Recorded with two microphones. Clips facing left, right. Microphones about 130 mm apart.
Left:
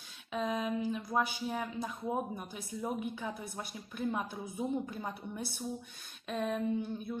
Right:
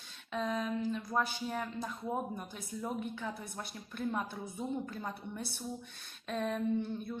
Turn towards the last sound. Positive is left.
turn(degrees=5)  # may be behind; listen again after turning